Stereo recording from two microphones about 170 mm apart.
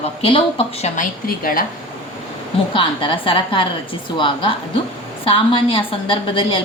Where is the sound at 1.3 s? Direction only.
60° left (ahead or behind).